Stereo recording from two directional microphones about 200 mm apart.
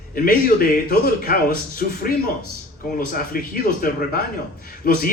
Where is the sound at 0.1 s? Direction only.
45° left (ahead or behind).